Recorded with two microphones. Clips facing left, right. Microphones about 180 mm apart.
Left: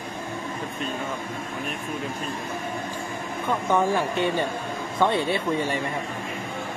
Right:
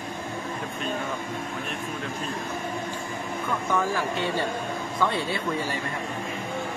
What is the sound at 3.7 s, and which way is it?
Speech, 25° left (ahead or behind).